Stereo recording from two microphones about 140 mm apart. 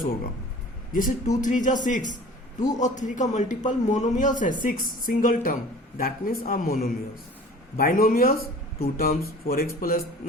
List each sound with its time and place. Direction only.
0.9 s speech: 75° left (ahead or behind); by 9.6 s 90° left